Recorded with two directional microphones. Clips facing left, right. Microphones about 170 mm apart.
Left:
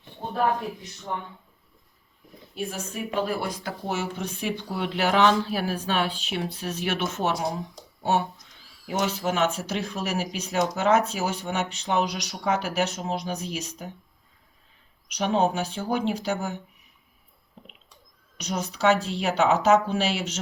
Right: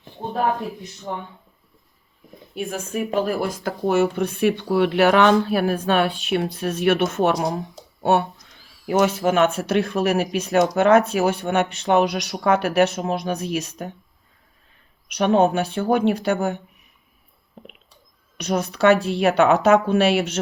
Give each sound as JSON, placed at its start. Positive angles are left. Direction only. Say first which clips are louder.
{"t": 2.6, "sound": "speech", "louder": "right 6 dB", "side_deg": -50}
{"t": 15.1, "sound": "speech", "louder": "right 6 dB", "side_deg": -60}
{"t": 17.6, "sound": "a sound", "louder": "right 6 dB", "side_deg": -55}
{"t": 18.3, "sound": "speech", "louder": "right 7 dB", "side_deg": -60}